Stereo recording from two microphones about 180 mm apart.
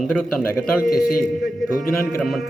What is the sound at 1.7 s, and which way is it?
Speech, 50° left (ahead or behind).